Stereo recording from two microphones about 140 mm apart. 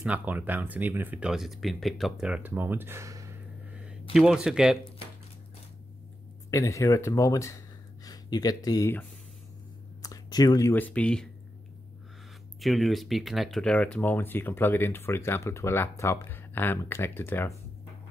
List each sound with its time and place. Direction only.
0.0 s speech: 10° right (ahead or behind)
4.1 s speech: 5° right (ahead or behind)
6.5 s speech: 20° left (ahead or behind)
10.0 s a sound: 25° left (ahead or behind)
10.7 s speech: 10° left (ahead or behind)
12.5 s speech: centre (ahead or behind); by 17.6 s 15° left (ahead or behind)